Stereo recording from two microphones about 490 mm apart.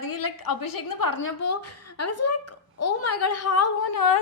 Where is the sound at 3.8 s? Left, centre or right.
Left.